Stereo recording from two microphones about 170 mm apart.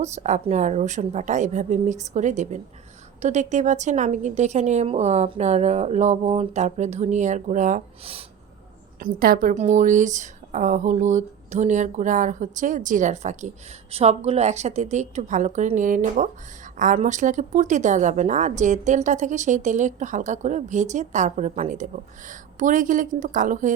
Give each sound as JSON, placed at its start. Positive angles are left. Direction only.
{"t": 0.0, "sound": "speech", "side_deg": -40}
{"t": 9.0, "sound": "speech", "side_deg": -55}